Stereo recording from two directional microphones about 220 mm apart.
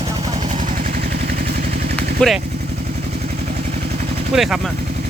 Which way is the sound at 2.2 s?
5° left (ahead or behind).